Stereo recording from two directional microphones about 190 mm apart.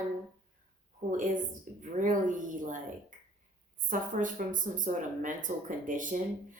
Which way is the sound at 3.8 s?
45° right (ahead or behind).